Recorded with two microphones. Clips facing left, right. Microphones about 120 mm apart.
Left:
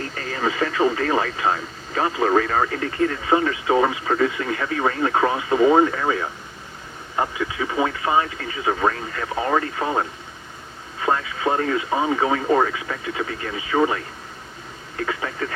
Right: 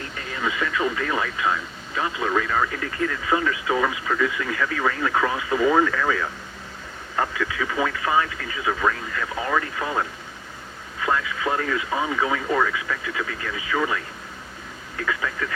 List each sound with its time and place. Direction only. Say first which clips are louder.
0.0 s speech: left 4 dB; 35° left (ahead or behind)